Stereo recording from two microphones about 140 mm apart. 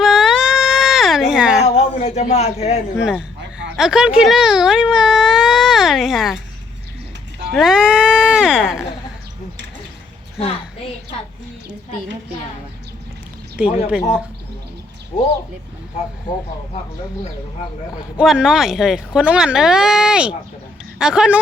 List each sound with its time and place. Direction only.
0.0 s a sound: 5° right (ahead or behind)
1.7 s a man's voice: 50° left (ahead or behind)
2.9 s speech: 5° right (ahead or behind)
7.5 s speech: centre (ahead or behind)
10.3 s a woman's voice: 40° left (ahead or behind)
13.6 s speech: 10° right (ahead or behind)
18.2 s speech: 5° right (ahead or behind)